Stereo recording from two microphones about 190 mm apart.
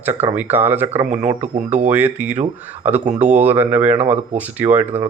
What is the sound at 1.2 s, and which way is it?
Speech, 40° right (ahead or behind).